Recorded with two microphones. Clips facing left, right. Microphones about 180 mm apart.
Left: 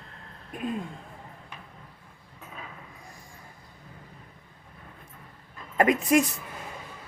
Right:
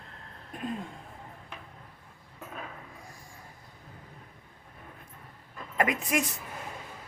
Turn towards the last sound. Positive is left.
turn(degrees=35)  # may be behind; listen again after turning